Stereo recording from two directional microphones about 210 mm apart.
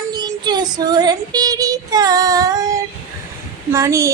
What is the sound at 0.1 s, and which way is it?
Child singing, 20° right (ahead or behind).